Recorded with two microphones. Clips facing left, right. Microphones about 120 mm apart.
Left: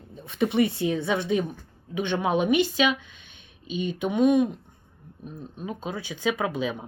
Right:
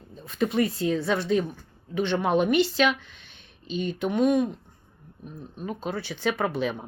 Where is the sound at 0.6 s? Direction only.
70° left (ahead or behind).